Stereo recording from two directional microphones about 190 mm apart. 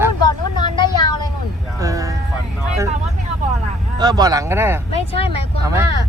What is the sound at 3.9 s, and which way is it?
Speech, 20° right (ahead or behind).